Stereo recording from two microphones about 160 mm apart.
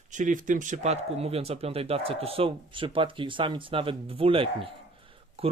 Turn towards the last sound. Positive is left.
turn(degrees=-35)  # may be behind; listen again after turning